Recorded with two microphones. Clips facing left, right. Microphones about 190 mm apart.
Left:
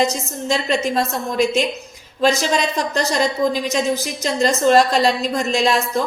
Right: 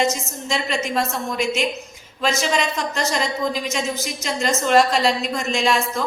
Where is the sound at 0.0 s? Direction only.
35° left (ahead or behind).